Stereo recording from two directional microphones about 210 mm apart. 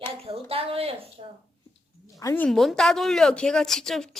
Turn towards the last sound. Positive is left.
turn(degrees=0)  # may be behind; listen again after turning